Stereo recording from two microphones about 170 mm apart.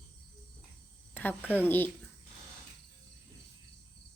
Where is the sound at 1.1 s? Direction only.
10° left (ahead or behind).